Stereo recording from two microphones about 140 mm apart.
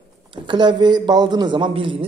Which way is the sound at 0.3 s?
35° right (ahead or behind).